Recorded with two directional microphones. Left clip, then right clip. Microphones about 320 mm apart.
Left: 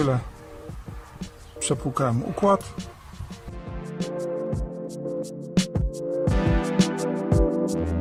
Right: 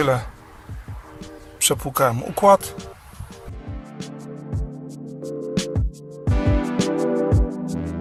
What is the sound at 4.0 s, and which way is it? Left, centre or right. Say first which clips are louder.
Music: left 6 dB; centre.